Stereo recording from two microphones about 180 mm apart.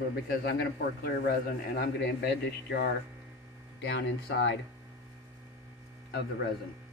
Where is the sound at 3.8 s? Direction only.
90° left.